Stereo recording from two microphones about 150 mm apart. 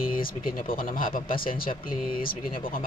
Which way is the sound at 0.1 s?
65° left (ahead or behind).